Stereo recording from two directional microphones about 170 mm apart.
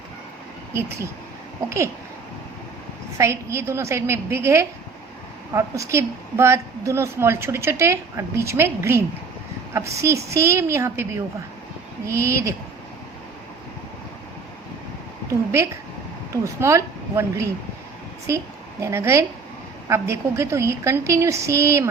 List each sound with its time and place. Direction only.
0.7 s a woman's voice: 15° right (ahead or behind)
3.2 s a woman's voice: 15° right (ahead or behind)
15.3 s a woman's voice: 15° right (ahead or behind)
18.8 s a woman's voice: 15° right (ahead or behind)